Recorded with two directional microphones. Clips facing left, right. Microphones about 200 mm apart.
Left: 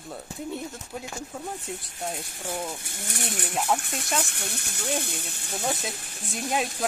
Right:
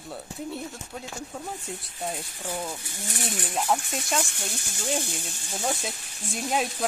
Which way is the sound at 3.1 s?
60° left (ahead or behind).